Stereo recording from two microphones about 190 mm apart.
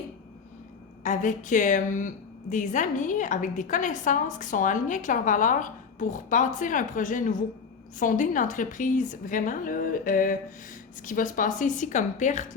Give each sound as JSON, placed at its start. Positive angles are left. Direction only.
{"t": 1.0, "sound": "a woman's voice", "side_deg": 40}